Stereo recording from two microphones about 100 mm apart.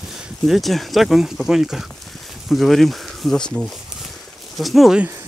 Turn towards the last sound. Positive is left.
turn(degrees=0)  # may be behind; listen again after turning